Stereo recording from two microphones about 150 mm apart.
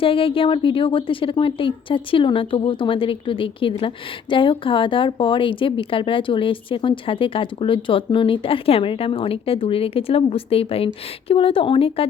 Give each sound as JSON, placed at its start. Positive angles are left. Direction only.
{"t": 0.0, "sound": "a woman's voice", "side_deg": 40}